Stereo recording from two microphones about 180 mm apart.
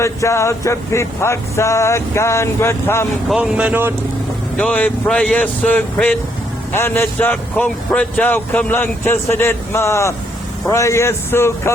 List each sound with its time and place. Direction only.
0.0 s speech: 15° left (ahead or behind)
3.2 s speech: 5° right (ahead or behind)
4.5 s speech: 5° left (ahead or behind)